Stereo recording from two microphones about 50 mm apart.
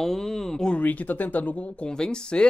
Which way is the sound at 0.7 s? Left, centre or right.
Left.